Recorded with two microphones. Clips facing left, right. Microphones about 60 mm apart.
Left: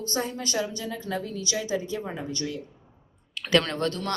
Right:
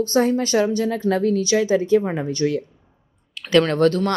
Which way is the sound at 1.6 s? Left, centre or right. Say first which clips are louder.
Right 12 dB; right.